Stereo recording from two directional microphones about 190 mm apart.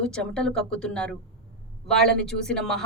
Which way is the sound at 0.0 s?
5° left (ahead or behind).